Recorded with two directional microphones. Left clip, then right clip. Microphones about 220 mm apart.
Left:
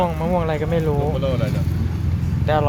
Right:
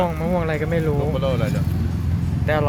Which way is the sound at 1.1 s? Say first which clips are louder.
Even; 25° right (ahead or behind).